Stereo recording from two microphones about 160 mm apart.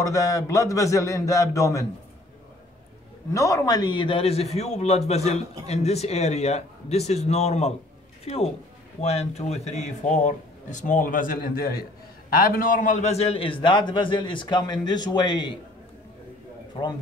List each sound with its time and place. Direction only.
0.0 s a man's voice: 20° left (ahead or behind)
3.3 s a man's voice: 20° left (ahead or behind)